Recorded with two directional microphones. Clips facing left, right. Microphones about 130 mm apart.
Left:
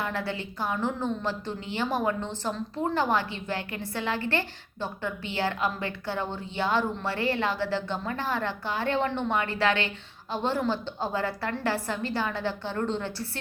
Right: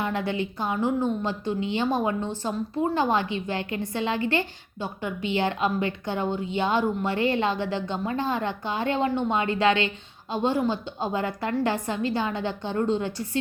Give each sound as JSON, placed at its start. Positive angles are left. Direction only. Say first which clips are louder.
{"t": 0.0, "sound": "a woman's voice", "louder": "right 4 dB", "side_deg": -20}